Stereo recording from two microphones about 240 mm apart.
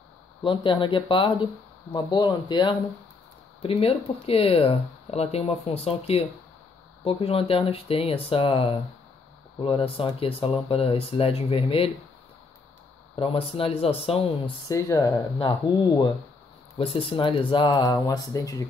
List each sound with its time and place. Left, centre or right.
0.4 s speech: left
13.1 s speech: left
14.7 s speech: centre